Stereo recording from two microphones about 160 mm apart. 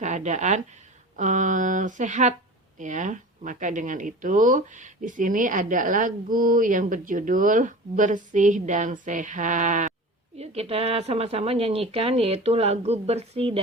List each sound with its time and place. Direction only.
0.0 s a woman's voice: 45° right (ahead or behind)
10.3 s a woman's voice: 40° right (ahead or behind)